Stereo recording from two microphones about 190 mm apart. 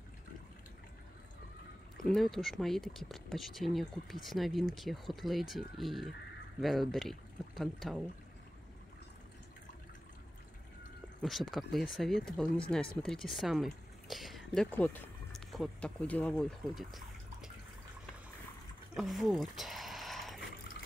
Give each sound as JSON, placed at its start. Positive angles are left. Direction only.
{"t": 2.0, "sound": "speech", "side_deg": 0}
{"t": 11.1, "sound": "speech", "side_deg": 0}
{"t": 18.9, "sound": "a sound", "side_deg": 0}